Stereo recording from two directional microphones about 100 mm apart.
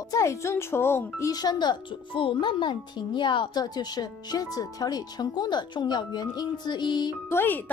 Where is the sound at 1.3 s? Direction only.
45° left (ahead or behind).